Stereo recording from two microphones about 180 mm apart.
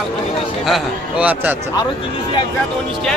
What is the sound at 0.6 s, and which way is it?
Speech, 5° right (ahead or behind).